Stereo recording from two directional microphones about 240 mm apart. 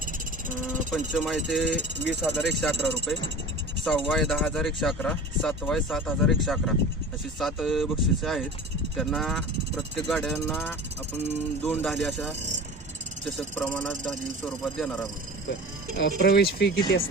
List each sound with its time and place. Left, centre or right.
0.9 s speech: centre
16.0 s speech: left